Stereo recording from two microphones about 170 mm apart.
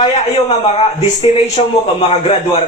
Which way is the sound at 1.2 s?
35° left (ahead or behind).